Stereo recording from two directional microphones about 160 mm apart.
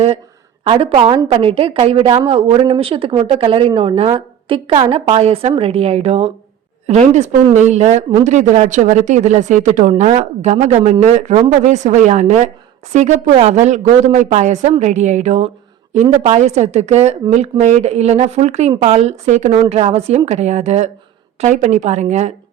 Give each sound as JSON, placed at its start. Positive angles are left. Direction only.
{"t": 0.6, "sound": "a woman's voice", "side_deg": -35}
{"t": 19.5, "sound": "speech", "side_deg": -35}